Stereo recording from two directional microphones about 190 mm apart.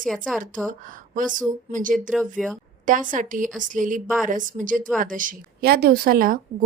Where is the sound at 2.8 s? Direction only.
45° right (ahead or behind).